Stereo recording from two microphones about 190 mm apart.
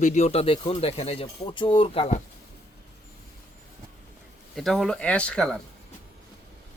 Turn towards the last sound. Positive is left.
turn(degrees=5)  # may be behind; listen again after turning